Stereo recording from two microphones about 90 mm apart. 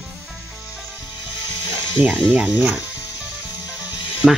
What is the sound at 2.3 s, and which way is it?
Speech, 15° right (ahead or behind).